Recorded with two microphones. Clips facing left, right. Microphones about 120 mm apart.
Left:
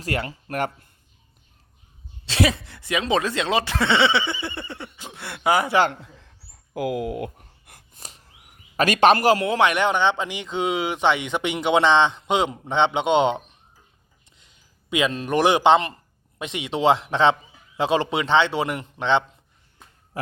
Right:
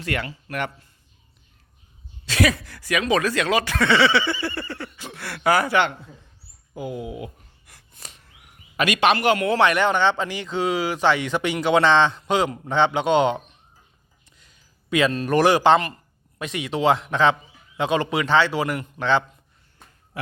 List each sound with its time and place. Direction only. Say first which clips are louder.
0.0 s speech: left 1 dB; 35° left (ahead or behind)
2.2 s speech: right 1 dB; 25° left (ahead or behind)
6.7 s speech: left 5 dB; 90° left; by 7.9 s 55° left (ahead or behind)
7.9 s a sound: even; 35° left (ahead or behind)
9.5 s speech: right 1 dB; 15° left (ahead or behind)